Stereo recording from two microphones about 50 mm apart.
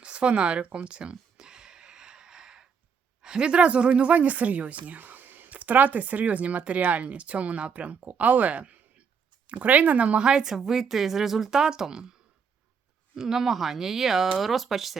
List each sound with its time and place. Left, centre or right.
0.0 s speech: right
1.4 s a sound: centre
3.2 s speech: centre
13.1 s speech: centre